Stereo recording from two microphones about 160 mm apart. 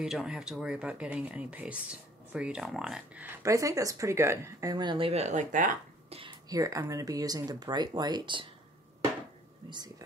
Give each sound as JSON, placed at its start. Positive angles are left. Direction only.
{"t": 0.0, "sound": "speech", "side_deg": -5}
{"t": 3.4, "sound": "speech", "side_deg": -20}
{"t": 6.0, "sound": "a sound", "side_deg": -35}
{"t": 6.5, "sound": "speech", "side_deg": -20}
{"t": 9.7, "sound": "speech", "side_deg": -25}